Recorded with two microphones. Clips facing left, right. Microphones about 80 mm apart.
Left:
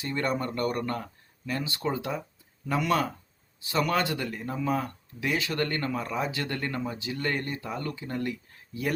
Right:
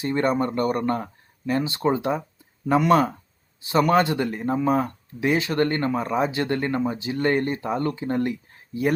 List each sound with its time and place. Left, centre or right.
0.0 s speech: right